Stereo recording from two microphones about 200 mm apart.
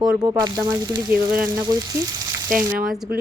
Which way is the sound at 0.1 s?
20° right (ahead or behind).